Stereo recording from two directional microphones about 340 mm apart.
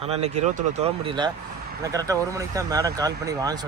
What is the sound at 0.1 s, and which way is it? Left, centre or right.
Speech, centre.